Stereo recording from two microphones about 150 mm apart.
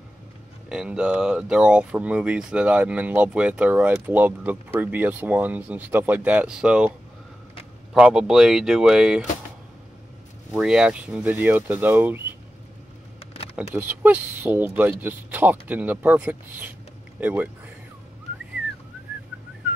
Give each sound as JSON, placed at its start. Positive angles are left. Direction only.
{"t": 0.7, "sound": "speech", "side_deg": -5}
{"t": 7.9, "sound": "speech", "side_deg": -5}
{"t": 10.5, "sound": "speech", "side_deg": -5}
{"t": 13.2, "sound": "camera", "side_deg": 40}
{"t": 13.7, "sound": "speech", "side_deg": -10}